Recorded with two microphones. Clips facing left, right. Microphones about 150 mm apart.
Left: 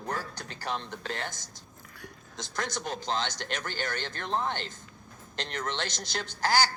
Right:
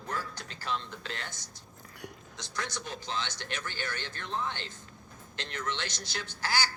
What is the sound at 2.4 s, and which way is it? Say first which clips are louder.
Speech: left 4 dB; 45° left (ahead or behind).